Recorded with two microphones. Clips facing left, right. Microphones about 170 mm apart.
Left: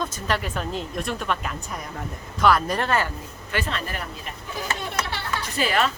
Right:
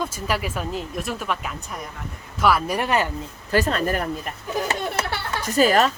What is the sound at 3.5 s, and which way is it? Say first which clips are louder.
Speech: right 8 dB; 40° right (ahead or behind).